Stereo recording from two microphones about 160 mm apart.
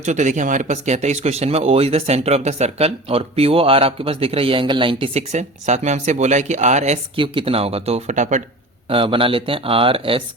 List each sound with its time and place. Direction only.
0.0 s speech: 50° right (ahead or behind)
8.9 s speech: 35° right (ahead or behind)